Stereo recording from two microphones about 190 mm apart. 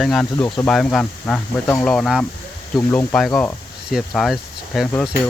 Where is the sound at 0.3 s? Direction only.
25° left (ahead or behind).